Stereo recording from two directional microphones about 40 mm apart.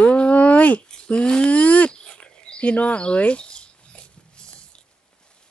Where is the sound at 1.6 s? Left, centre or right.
Left.